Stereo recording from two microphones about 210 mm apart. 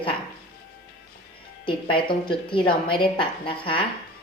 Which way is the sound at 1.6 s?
25° left (ahead or behind).